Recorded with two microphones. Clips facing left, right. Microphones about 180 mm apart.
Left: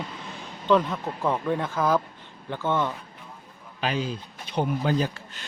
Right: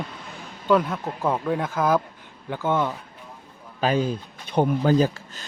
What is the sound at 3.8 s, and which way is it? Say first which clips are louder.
Speech: right 6 dB; 50° right (ahead or behind).